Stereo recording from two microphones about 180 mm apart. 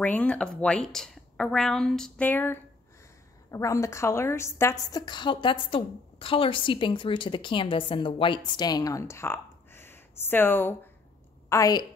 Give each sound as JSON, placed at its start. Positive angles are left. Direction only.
{"t": 0.0, "sound": "a woman's voice", "side_deg": 10}